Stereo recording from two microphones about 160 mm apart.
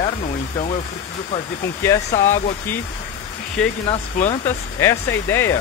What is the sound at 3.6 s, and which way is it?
Speech, 5° left (ahead or behind).